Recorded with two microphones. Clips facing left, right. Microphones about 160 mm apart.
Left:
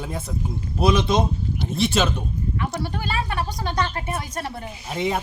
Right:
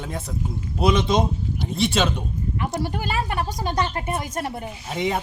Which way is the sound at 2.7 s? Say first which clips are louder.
Right 2 dB; 15° right (ahead or behind).